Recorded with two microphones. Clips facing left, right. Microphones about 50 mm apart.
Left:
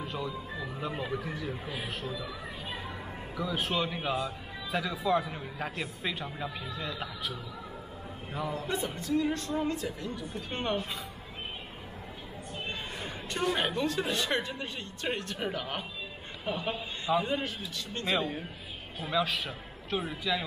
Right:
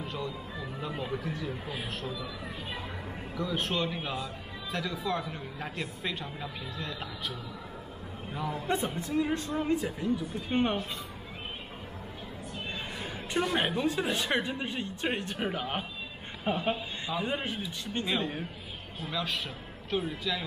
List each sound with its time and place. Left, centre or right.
0.0 s music: centre
0.7 s speech: centre
3.3 s speech: centre
8.6 s a woman's voice: right
13.3 s a woman's voice: centre
19.0 s a man's voice: centre